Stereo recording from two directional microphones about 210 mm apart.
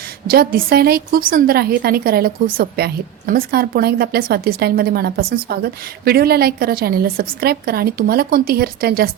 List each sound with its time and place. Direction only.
0.3 s a woman's voice: 45° right (ahead or behind)